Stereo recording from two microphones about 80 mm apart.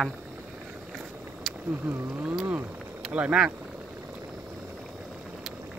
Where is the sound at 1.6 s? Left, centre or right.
Right.